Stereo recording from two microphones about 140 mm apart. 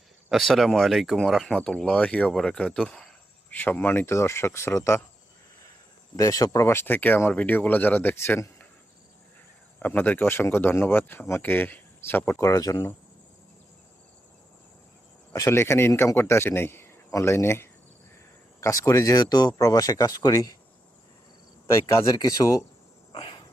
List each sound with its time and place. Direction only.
0.3 s speech: centre (ahead or behind); by 5.0 s 20° left (ahead or behind)
6.1 s speech: 25° left (ahead or behind)
9.8 s speech: 10° left (ahead or behind)
15.3 s speech: 20° left (ahead or behind)
21.7 s speech: 20° left (ahead or behind)
23.1 s cricket: 35° left (ahead or behind)